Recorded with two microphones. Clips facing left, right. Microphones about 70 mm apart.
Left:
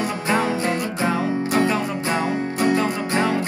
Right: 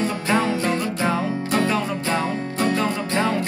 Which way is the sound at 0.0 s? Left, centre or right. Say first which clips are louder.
Even; left.